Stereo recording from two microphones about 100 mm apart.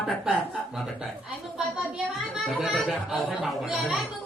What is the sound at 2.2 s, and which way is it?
A woman's voice, 5° right (ahead or behind).